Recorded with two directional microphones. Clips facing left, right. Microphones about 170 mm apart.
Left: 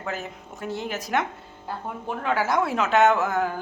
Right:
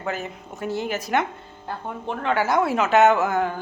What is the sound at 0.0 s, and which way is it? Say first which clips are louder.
Speech: right 3 dB; centre (ahead or behind).